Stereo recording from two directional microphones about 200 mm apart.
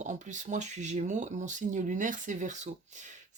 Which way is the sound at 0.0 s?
35° right (ahead or behind).